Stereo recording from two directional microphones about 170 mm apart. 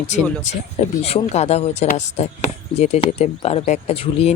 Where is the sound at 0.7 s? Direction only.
40° left (ahead or behind).